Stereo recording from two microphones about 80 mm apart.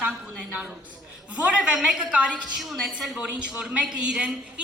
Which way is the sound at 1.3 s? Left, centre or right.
Centre.